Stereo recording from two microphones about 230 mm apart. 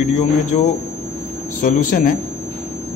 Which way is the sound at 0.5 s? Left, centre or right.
Left.